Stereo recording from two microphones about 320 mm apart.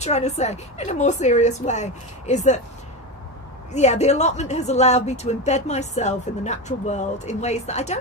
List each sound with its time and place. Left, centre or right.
0.0 s a woman's voice: left
3.7 s a woman's voice: left